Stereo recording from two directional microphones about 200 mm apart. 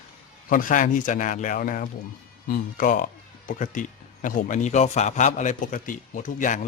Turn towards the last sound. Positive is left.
turn(degrees=40)  # may be behind; listen again after turning